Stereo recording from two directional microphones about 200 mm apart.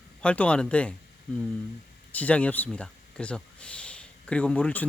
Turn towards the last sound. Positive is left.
turn(degrees=5)  # may be behind; listen again after turning